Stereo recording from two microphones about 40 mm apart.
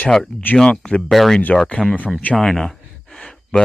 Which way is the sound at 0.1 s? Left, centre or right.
Centre.